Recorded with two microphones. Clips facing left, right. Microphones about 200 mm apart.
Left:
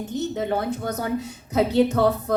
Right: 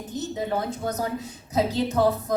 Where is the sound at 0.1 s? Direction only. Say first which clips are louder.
Left 2 dB; 65° left (ahead or behind).